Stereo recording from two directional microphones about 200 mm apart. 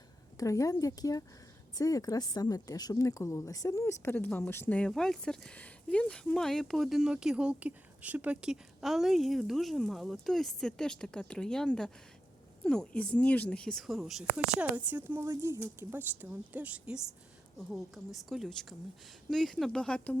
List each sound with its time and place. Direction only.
0.3 s a woman's voice: 15° left (ahead or behind)